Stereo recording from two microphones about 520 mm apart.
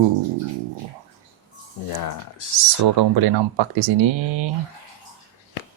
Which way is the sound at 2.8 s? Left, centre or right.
Right.